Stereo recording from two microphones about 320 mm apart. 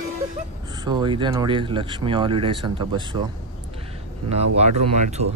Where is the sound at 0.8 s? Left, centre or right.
Centre.